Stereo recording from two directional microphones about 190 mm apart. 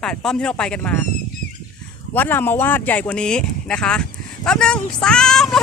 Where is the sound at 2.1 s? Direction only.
10° left (ahead or behind).